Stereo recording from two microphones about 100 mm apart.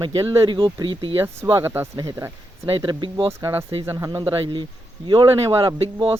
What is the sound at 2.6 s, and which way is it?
Speech, 55° right (ahead or behind).